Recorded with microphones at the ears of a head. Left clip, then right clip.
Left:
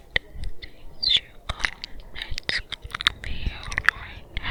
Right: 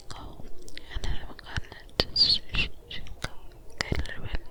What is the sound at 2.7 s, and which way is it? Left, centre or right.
Whispering, left.